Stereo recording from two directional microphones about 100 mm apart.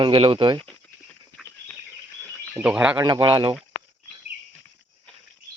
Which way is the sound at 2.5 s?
10° right (ahead or behind).